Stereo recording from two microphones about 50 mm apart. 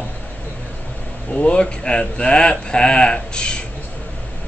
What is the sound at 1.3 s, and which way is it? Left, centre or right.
Speech, left.